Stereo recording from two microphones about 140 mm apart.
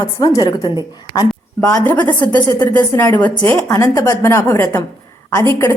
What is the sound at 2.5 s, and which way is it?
Speech, 30° left (ahead or behind).